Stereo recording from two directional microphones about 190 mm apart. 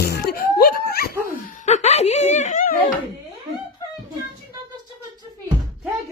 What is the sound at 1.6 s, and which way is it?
Snicker, 35° left (ahead or behind).